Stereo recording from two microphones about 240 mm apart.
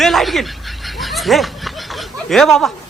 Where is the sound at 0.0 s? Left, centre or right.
Centre.